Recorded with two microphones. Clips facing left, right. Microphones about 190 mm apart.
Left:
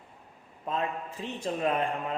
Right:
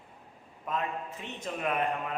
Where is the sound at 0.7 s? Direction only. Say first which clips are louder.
Left 2 dB; 30° left (ahead or behind).